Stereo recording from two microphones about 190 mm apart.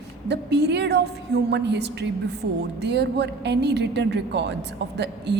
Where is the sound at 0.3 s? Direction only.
65° right (ahead or behind).